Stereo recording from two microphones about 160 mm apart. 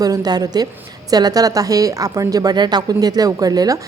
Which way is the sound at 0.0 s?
25° right (ahead or behind).